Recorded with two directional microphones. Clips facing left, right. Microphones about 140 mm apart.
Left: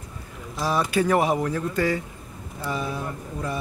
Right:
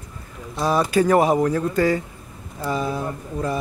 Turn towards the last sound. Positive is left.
turn(degrees=-40)  # may be behind; listen again after turning